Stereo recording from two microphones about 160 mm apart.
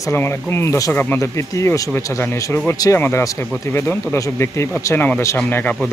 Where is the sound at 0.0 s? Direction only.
15° left (ahead or behind).